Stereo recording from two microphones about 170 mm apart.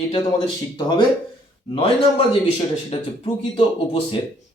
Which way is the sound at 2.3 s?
35° left (ahead or behind).